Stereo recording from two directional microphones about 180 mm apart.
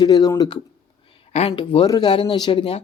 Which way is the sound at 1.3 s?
35° left (ahead or behind).